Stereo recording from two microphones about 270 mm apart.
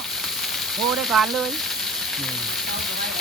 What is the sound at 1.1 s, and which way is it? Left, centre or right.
Frying, centre.